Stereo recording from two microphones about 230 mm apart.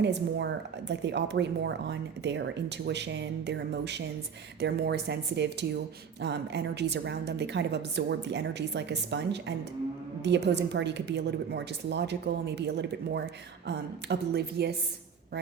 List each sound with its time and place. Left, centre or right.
0.0 s speech: right